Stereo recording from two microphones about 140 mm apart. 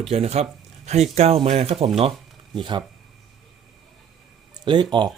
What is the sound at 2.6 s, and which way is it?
Speech, 35° right (ahead or behind).